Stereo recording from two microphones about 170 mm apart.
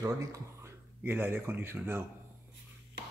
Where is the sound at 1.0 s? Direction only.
10° right (ahead or behind).